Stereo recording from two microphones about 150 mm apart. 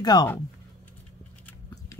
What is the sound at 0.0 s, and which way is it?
Speech, 30° left (ahead or behind).